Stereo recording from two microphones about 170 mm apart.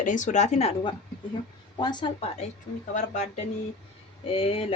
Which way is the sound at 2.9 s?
45° left (ahead or behind).